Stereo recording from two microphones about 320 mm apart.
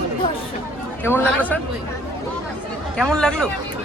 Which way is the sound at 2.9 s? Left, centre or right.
Centre.